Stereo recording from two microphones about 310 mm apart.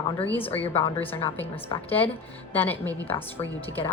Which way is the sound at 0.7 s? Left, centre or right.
Centre.